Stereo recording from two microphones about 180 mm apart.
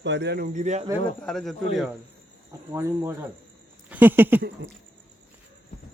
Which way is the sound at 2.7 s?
15° right (ahead or behind).